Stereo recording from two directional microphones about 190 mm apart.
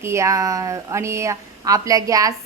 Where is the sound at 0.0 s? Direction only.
15° right (ahead or behind).